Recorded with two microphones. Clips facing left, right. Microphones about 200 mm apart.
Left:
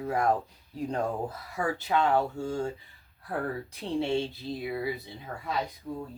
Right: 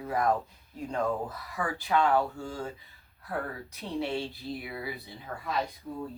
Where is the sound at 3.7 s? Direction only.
30° left (ahead or behind).